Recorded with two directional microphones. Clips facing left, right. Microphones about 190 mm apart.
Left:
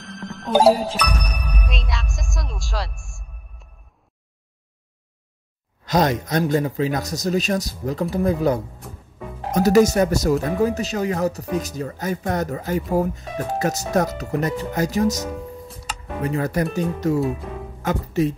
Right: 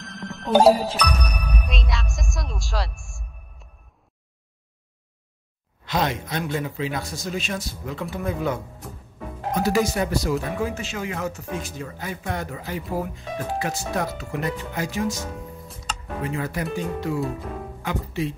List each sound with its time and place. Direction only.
0.6 s music: 5° left (ahead or behind)
5.9 s speech: 40° left (ahead or behind)
15.7 s music: 5° left (ahead or behind)
16.2 s speech: 40° left (ahead or behind)